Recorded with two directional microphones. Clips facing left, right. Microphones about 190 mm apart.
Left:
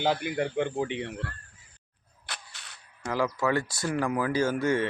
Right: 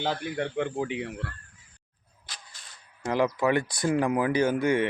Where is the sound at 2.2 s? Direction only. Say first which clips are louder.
Left 5 dB; 70° left (ahead or behind).